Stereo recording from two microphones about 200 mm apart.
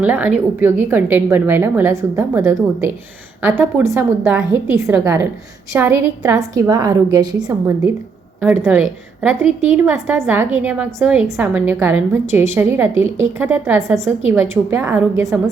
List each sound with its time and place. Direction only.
0.0 s a woman's voice: 10° right (ahead or behind)
8.4 s a woman's voice: 10° right (ahead or behind)